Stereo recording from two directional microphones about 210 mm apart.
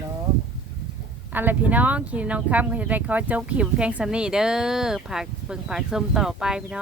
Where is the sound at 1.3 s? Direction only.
10° right (ahead or behind).